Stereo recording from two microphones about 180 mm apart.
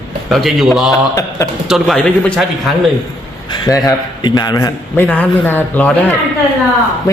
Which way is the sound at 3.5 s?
20° left (ahead or behind).